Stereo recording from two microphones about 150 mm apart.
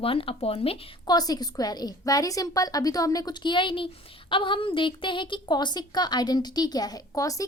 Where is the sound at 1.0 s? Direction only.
25° left (ahead or behind).